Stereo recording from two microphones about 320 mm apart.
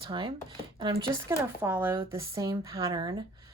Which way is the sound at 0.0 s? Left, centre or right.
Centre.